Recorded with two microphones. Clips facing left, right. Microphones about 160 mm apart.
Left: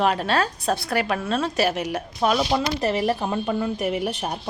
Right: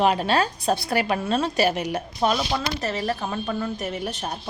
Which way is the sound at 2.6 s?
20° left (ahead or behind).